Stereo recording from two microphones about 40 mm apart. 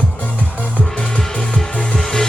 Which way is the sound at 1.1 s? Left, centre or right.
Left.